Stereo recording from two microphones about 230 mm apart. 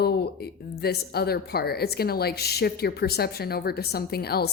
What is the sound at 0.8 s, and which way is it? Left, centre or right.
A woman's voice, left.